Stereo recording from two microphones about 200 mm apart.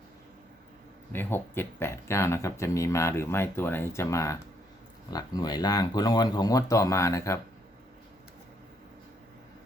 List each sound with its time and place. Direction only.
1.1 s speech: 10° left (ahead or behind)